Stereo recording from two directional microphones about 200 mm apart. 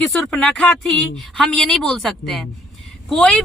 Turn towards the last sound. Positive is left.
turn(degrees=5)  # may be behind; listen again after turning